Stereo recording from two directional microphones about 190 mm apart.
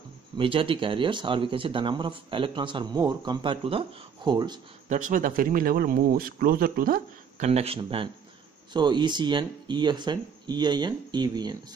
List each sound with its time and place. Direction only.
0.4 s speech: 30° right (ahead or behind)
4.8 s speech: 40° right (ahead or behind); by 11.5 s 20° right (ahead or behind)